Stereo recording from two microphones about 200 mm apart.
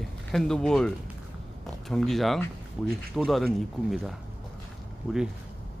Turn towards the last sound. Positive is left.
turn(degrees=-5)  # may be behind; listen again after turning